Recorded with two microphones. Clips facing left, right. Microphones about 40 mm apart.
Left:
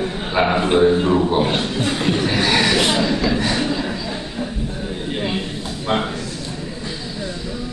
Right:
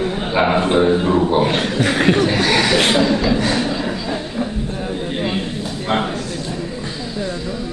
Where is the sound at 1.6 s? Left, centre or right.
Right.